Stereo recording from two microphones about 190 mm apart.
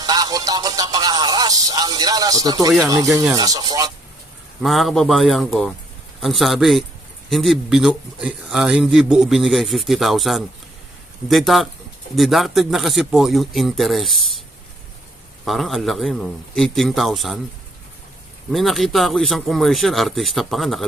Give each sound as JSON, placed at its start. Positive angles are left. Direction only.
{"t": 0.0, "sound": "music", "side_deg": -20}
{"t": 2.8, "sound": "speech", "side_deg": -20}
{"t": 4.6, "sound": "a man's voice", "side_deg": 0}
{"t": 15.4, "sound": "a man's voice", "side_deg": 0}
{"t": 18.5, "sound": "a man's voice", "side_deg": 0}